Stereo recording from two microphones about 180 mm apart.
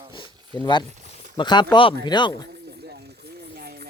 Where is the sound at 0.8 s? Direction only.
40° right (ahead or behind).